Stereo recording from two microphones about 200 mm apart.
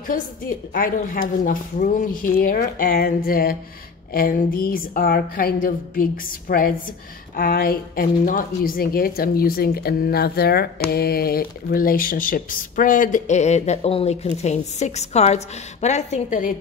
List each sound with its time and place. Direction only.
0.0 s speech: 45° left (ahead or behind)